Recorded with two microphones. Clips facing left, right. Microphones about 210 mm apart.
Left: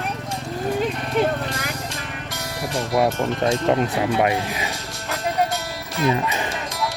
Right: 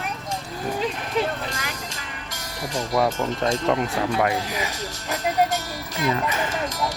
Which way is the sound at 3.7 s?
25° left (ahead or behind).